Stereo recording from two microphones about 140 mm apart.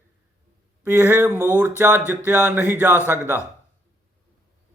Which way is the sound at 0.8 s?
15° right (ahead or behind).